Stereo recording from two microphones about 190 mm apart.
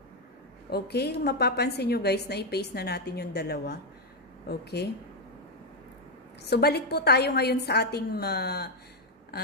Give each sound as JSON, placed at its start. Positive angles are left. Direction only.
{"t": 0.7, "sound": "a woman's voice", "side_deg": 55}
{"t": 6.4, "sound": "a woman's voice", "side_deg": 60}